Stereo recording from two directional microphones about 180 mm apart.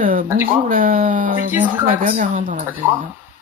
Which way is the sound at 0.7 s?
50° right (ahead or behind).